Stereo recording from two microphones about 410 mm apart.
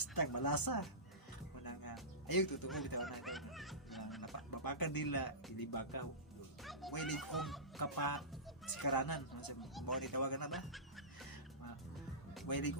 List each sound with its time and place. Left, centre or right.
0.1 s speech: left
1.6 s music: left
2.6 s speech: centre
3.0 s music: centre
4.5 s speech: left
6.6 s bow-wow: centre
7.0 s speech: centre
7.8 s speech: left
10.5 s music: centre
12.5 s speech: left